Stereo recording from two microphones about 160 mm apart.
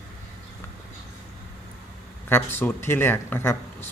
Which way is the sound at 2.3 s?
15° left (ahead or behind).